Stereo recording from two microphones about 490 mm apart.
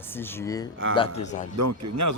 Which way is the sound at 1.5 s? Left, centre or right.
Right.